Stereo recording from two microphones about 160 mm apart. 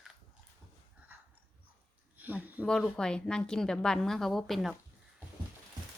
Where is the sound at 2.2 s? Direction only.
10° right (ahead or behind).